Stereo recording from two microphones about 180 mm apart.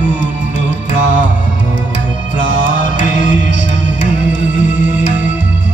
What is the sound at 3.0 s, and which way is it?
Music, 45° left (ahead or behind).